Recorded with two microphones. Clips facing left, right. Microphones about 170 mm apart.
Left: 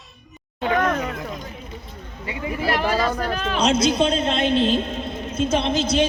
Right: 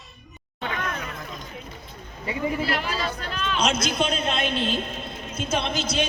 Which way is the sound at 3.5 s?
30° left (ahead or behind).